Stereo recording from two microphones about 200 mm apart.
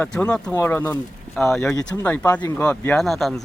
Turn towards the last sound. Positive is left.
turn(degrees=0)  # may be behind; listen again after turning